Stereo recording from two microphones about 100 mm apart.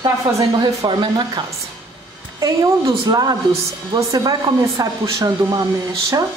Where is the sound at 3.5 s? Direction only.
30° right (ahead or behind).